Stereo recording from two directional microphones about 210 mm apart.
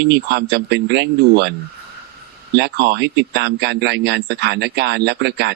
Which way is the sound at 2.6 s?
50° right (ahead or behind).